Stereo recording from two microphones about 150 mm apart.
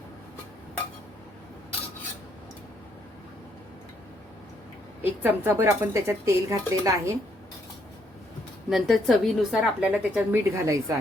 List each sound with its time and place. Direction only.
5.2 s speech: 15° right (ahead or behind)
8.7 s a woman's voice: centre (ahead or behind); by 10.9 s 20° right (ahead or behind)